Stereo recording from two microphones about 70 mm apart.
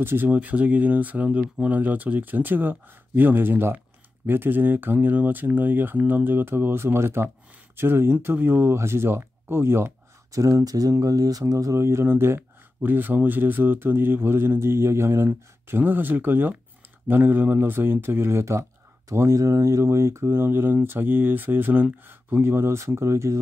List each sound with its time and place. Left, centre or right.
0.0 s speech: right
0.3 s speech: right
10.3 s speech: right